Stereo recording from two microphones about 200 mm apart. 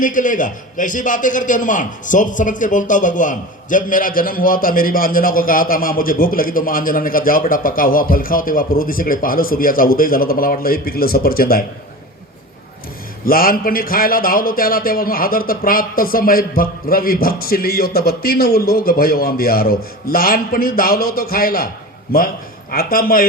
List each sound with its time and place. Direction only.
0.0 s a man's voice: 40° left (ahead or behind)
13.2 s a man's voice: 45° left (ahead or behind)
22.7 s a man's voice: 45° left (ahead or behind)